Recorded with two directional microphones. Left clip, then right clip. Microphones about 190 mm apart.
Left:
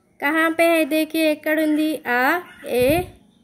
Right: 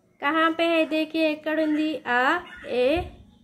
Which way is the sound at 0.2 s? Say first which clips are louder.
Left 4 dB; 60° left (ahead or behind).